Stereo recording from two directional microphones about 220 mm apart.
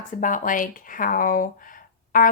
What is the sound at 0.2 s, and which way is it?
A woman's voice, 35° left (ahead or behind).